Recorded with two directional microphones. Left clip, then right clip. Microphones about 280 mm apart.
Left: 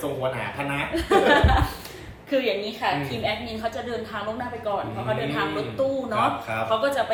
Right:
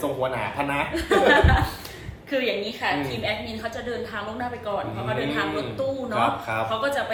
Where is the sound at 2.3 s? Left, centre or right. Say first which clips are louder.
Left 1 dB; centre.